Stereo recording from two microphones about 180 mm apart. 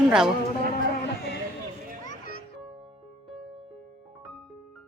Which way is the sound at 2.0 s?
45° left (ahead or behind).